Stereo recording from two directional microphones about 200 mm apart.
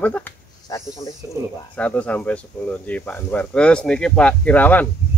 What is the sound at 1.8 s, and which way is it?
A man's voice, 5° left (ahead or behind).